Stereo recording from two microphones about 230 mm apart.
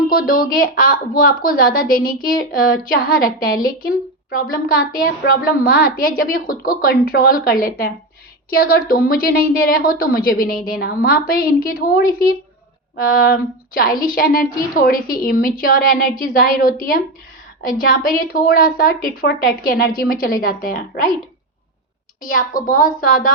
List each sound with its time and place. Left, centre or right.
0.1 s a woman's voice: left
22.2 s a woman's voice: left